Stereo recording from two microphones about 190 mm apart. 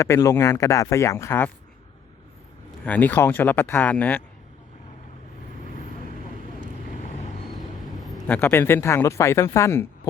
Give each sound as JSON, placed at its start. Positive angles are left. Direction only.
{"t": 0.0, "sound": "a man's voice", "side_deg": 15}
{"t": 2.8, "sound": "a man's voice", "side_deg": 10}
{"t": 7.9, "sound": "a man's voice", "side_deg": 0}